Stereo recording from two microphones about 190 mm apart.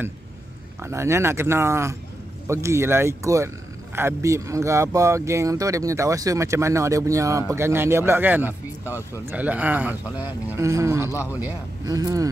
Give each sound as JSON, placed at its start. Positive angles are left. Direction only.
{"t": 0.8, "sound": "speech", "side_deg": -15}
{"t": 11.1, "sound": "speech", "side_deg": 15}
{"t": 11.8, "sound": "speech", "side_deg": -20}